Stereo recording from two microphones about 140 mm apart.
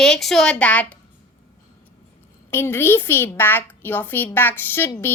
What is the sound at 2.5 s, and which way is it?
A woman's voice, 15° left (ahead or behind).